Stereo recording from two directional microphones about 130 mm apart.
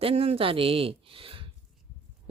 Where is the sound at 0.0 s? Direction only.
50° right (ahead or behind).